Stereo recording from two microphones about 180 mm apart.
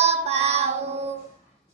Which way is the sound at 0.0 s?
35° right (ahead or behind).